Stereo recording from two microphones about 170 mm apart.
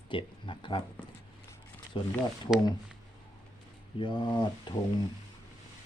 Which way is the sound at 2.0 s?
30° left (ahead or behind).